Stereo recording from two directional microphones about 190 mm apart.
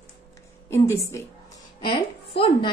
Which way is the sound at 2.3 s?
30° left (ahead or behind).